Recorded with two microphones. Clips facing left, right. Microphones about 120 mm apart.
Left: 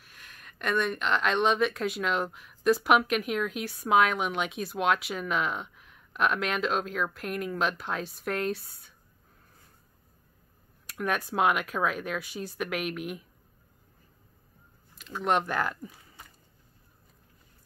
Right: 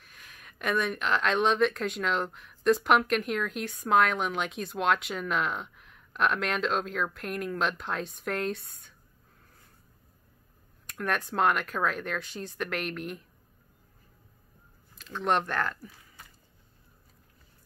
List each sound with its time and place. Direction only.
0.0 s speech: centre (ahead or behind)
10.9 s speech: 5° left (ahead or behind)
15.0 s speech: 5° left (ahead or behind)
15.8 s a sound: 20° left (ahead or behind)